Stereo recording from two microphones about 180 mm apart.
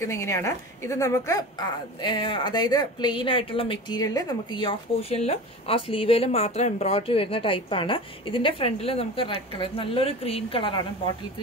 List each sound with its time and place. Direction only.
0.0 s a woman's voice: 15° left (ahead or behind); by 10.8 s 30° left (ahead or behind)